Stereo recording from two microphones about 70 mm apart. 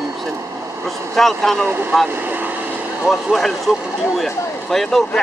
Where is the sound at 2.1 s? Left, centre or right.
Right.